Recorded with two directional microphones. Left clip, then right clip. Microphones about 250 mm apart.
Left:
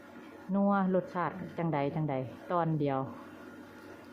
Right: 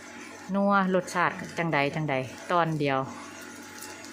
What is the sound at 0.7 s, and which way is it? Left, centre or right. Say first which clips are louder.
Speech: right 7 dB; centre.